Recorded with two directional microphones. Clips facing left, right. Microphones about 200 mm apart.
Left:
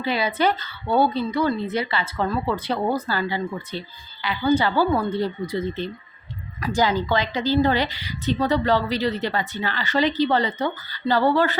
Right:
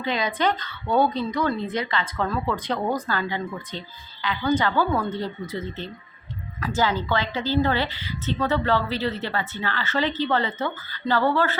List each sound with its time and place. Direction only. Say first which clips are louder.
0.0 s a woman's voice: left 2 dB; 5° left (ahead or behind)